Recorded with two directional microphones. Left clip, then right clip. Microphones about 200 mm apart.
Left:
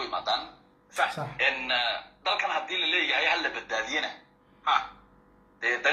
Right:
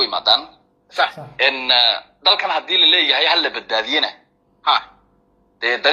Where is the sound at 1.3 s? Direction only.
50° right (ahead or behind).